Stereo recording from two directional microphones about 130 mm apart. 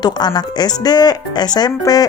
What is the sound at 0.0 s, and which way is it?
Speech, 30° left (ahead or behind).